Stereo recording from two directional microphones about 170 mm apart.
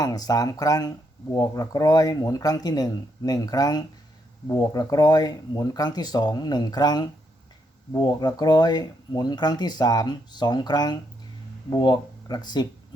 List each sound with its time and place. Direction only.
0.0 s speech: 20° left (ahead or behind)